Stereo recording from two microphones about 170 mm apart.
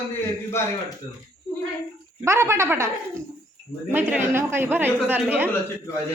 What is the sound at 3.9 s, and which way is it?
A man's voice, 10° right (ahead or behind).